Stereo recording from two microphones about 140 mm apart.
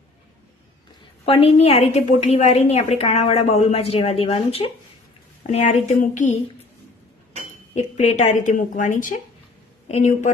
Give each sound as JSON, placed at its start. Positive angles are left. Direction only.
{"t": 1.2, "sound": "a woman's voice", "side_deg": 45}
{"t": 6.0, "sound": "a woman's voice", "side_deg": 65}
{"t": 7.8, "sound": "a woman's voice", "side_deg": 55}
{"t": 9.9, "sound": "a woman's voice", "side_deg": 55}